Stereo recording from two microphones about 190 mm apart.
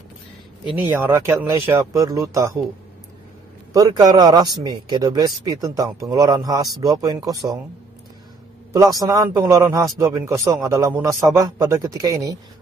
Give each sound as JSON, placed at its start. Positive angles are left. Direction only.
{"t": 0.8, "sound": "a man's voice", "side_deg": -15}
{"t": 3.7, "sound": "a man's voice", "side_deg": -20}
{"t": 9.0, "sound": "a man's voice", "side_deg": -20}